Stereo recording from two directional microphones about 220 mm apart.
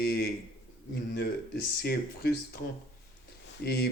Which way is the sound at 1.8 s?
45° left (ahead or behind).